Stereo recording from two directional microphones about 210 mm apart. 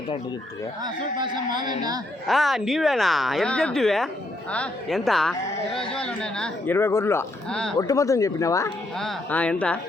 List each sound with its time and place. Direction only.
1.2 s speech: 20° right (ahead or behind)
2.2 s speech: centre (ahead or behind)
7.8 s speech: 15° left (ahead or behind)
9.0 s speech: 5° left (ahead or behind)